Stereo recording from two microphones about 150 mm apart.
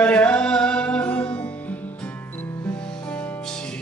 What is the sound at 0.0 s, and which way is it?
Music, 10° left (ahead or behind).